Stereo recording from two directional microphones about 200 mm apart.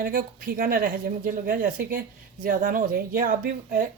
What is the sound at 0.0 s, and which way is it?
Speech, 45° right (ahead or behind).